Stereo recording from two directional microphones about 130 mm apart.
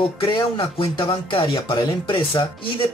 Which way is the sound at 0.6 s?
40° left (ahead or behind).